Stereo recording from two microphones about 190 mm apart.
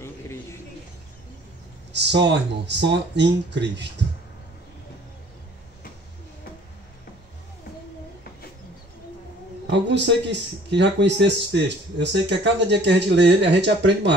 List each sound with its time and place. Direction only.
0.0 s a sound: 15° left (ahead or behind)
1.9 s speech: 65° right (ahead or behind)
9.7 s a man's voice: 70° right (ahead or behind)